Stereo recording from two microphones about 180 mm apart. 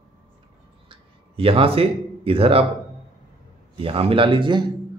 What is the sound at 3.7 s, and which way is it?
Speech, 30° right (ahead or behind).